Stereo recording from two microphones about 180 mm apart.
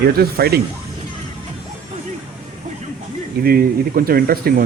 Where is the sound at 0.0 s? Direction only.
60° right (ahead or behind).